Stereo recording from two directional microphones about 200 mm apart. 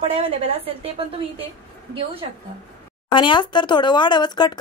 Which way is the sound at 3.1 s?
25° left (ahead or behind).